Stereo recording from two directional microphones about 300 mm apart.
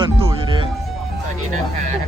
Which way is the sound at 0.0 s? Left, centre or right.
Centre.